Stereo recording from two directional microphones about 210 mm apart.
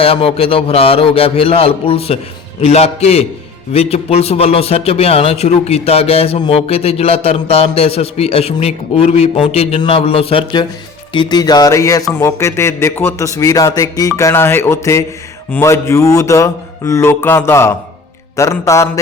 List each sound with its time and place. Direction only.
0.0 s a man's voice: 25° left (ahead or behind)